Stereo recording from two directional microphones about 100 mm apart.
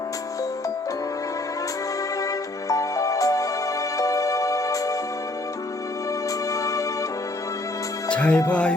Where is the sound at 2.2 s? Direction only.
35° left (ahead or behind).